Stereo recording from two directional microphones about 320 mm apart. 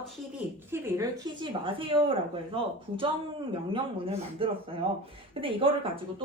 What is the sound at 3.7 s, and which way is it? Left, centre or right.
Speech, centre.